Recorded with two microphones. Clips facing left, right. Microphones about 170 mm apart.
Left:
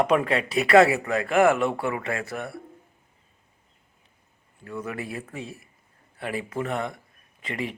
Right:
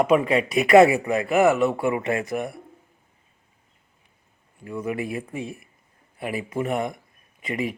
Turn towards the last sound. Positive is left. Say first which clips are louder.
# right 4 dB
turn(degrees=-10)  # may be behind; listen again after turning